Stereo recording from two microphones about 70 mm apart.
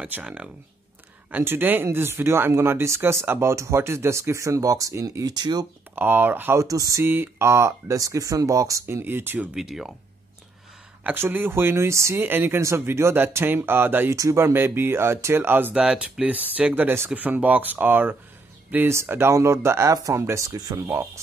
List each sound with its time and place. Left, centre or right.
0.0 s speech: centre
1.3 s speech: right
5.2 s speech: right
5.9 s speech: right
6.6 s speech: right
7.1 s speech: right
9.0 s speech: right
9.5 s speech: centre
11.1 s speech: right
12.2 s speech: right
14.1 s speech: right
15.7 s speech: centre
18.9 s speech: right
19.9 s speech: right